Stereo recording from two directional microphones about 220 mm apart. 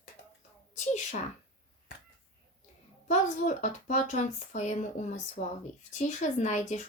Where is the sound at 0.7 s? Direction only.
35° left (ahead or behind).